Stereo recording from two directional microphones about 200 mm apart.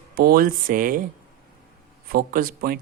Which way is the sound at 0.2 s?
45° right (ahead or behind).